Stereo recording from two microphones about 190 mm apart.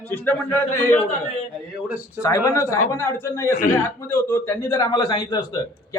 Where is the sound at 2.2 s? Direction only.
15° left (ahead or behind).